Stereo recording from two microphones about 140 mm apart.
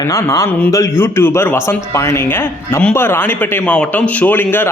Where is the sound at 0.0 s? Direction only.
20° left (ahead or behind).